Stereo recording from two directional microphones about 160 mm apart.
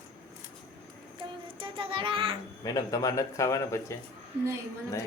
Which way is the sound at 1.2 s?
35° right (ahead or behind).